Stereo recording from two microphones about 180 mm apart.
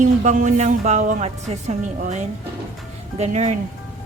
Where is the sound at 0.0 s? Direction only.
45° right (ahead or behind).